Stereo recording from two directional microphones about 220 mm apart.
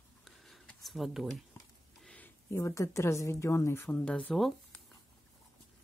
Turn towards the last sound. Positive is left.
turn(degrees=0)  # may be behind; listen again after turning